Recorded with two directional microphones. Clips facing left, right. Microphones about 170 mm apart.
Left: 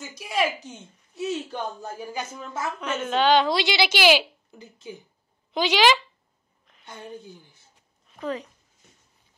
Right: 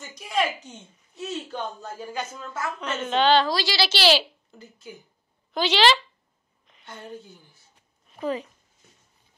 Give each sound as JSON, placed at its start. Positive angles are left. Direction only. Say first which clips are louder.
{"t": 0.0, "sound": "a sound", "louder": "even", "side_deg": 10}
{"t": 0.7, "sound": "a woman's voice", "louder": "left 3 dB", "side_deg": 10}
{"t": 3.4, "sound": "a woman's voice", "louder": "left 2 dB", "side_deg": 20}
{"t": 6.9, "sound": "a woman's voice", "louder": "even", "side_deg": 15}
{"t": 8.2, "sound": "speech", "louder": "right 2 dB", "side_deg": -5}